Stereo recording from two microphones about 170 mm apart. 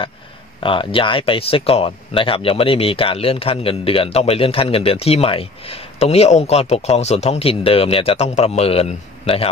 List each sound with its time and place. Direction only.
0.6 s speech: 30° left (ahead or behind)